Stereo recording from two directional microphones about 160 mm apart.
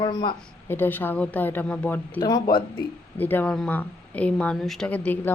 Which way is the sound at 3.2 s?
10° left (ahead or behind).